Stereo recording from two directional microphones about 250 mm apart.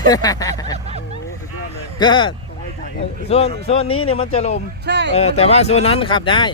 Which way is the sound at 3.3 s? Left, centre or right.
Left.